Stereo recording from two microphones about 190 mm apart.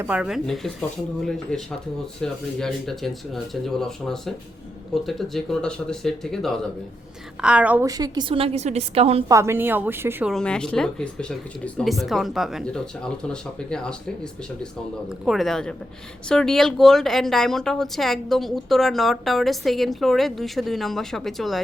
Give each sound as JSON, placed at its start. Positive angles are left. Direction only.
{"t": 0.0, "sound": "a woman's voice", "side_deg": -5}
{"t": 7.9, "sound": "a woman's voice", "side_deg": -20}
{"t": 9.3, "sound": "a woman's voice", "side_deg": -15}
{"t": 10.3, "sound": "speech", "side_deg": 5}
{"t": 15.2, "sound": "speech", "side_deg": 0}